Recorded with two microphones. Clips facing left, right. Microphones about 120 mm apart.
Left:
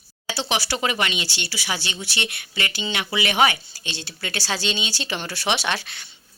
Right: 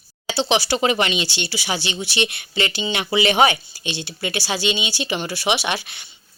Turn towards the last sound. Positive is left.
turn(degrees=-15)  # may be behind; listen again after turning